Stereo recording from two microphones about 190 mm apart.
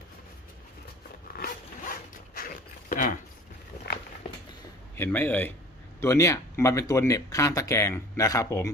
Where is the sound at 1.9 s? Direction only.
50° left (ahead or behind).